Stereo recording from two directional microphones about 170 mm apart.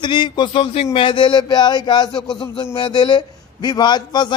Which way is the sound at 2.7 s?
25° left (ahead or behind).